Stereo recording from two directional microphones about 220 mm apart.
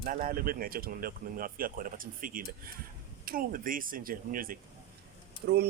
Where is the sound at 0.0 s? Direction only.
40° right (ahead or behind).